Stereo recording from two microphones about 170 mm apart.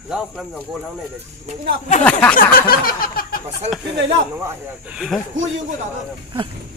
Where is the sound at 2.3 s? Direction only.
60° left (ahead or behind).